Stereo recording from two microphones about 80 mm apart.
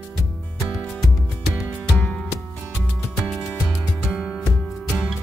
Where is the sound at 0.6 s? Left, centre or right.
Centre.